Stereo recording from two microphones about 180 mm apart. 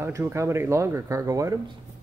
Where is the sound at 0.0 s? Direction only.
15° right (ahead or behind).